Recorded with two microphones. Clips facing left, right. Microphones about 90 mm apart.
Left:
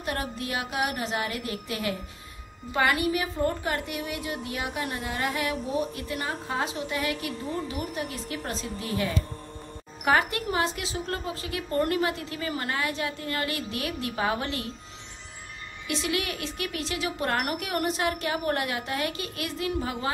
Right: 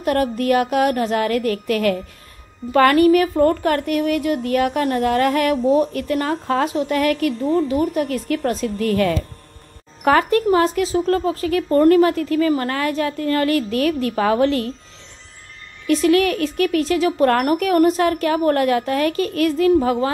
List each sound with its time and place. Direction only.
0.0 s a woman's voice: 50° right (ahead or behind)
8.8 s speech: 65° right (ahead or behind)
10.0 s a woman's voice: 45° right (ahead or behind)
15.9 s a woman's voice: 45° right (ahead or behind)